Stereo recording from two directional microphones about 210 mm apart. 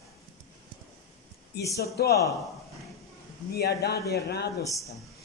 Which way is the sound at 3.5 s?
50° left (ahead or behind).